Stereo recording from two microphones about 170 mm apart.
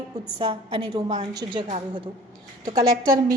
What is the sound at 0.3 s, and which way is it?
Speech, 30° right (ahead or behind).